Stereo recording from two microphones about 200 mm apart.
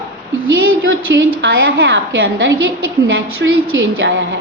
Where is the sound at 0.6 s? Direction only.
75° right (ahead or behind).